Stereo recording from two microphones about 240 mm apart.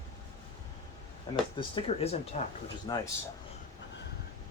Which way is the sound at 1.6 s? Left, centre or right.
Left.